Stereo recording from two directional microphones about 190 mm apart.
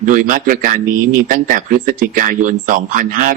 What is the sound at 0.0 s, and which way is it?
Speech, 45° right (ahead or behind).